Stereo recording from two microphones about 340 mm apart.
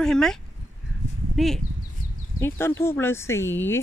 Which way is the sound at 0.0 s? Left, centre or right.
Centre.